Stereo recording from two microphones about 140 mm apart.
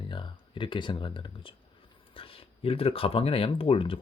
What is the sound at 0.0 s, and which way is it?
Speech, 35° left (ahead or behind).